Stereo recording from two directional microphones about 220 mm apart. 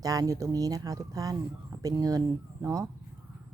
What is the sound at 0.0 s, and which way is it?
Speech, 15° right (ahead or behind).